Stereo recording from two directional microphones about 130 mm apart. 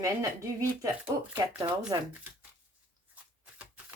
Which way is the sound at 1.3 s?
30° right (ahead or behind).